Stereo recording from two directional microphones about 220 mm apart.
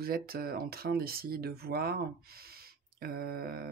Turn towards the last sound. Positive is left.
turn(degrees=-45)  # may be behind; listen again after turning